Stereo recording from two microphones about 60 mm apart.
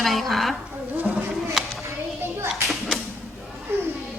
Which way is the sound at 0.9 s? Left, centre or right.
Right.